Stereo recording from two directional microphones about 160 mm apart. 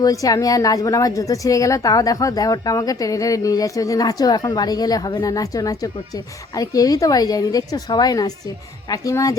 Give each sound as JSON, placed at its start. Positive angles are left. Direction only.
{"t": 0.0, "sound": "speech", "side_deg": 20}